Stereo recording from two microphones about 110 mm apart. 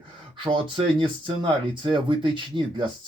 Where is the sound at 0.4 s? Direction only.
50° right (ahead or behind).